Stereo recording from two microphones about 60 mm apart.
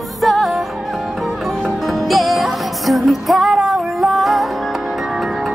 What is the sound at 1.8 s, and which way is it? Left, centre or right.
Music, centre.